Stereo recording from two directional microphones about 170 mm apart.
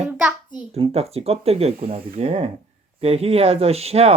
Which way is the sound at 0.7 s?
35° right (ahead or behind).